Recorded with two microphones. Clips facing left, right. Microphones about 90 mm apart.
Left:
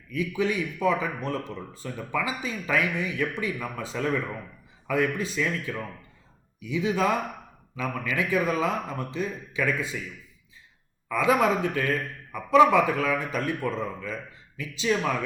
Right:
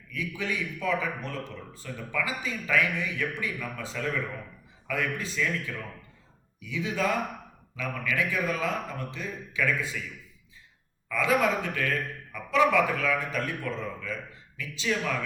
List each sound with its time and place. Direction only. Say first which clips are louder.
0.1 s a man's voice: left 6 dB; 25° left (ahead or behind)
11.1 s a man's voice: left 3 dB; 25° left (ahead or behind)